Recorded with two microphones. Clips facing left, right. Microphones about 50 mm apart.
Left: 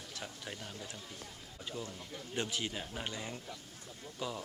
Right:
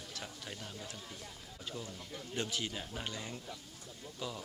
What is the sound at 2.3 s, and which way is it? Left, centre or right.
Speech, left.